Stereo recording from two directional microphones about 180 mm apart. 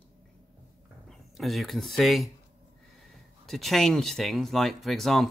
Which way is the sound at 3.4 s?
Centre (ahead or behind).